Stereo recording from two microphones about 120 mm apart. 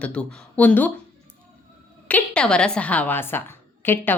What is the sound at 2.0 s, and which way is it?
Speech, 10° left (ahead or behind).